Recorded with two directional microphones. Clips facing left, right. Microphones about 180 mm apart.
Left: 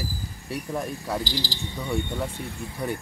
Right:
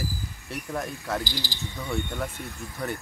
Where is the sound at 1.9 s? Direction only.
15° left (ahead or behind).